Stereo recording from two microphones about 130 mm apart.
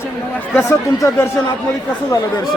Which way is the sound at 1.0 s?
20° left (ahead or behind).